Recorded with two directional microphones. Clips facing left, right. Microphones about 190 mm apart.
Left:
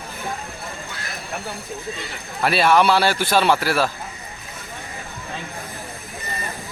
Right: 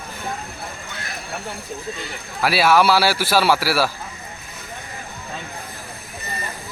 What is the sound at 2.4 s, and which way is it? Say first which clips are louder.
A man's voice: even; 5° right (ahead or behind).